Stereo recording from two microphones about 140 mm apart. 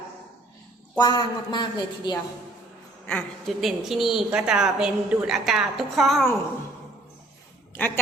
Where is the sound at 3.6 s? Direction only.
Centre (ahead or behind).